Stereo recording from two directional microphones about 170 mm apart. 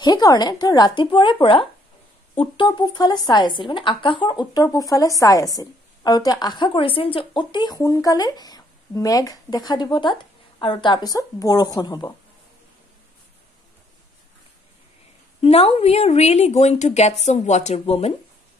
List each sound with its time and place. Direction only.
0.0 s a woman's voice: 25° left (ahead or behind)
15.4 s a woman's voice: 35° left (ahead or behind)